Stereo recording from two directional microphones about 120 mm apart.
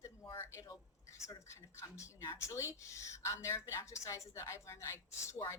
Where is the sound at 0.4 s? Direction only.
25° left (ahead or behind).